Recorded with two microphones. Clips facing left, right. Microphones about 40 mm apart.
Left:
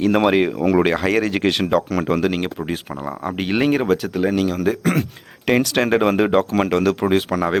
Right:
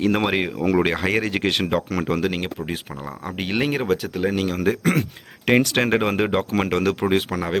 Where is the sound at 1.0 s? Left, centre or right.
Centre.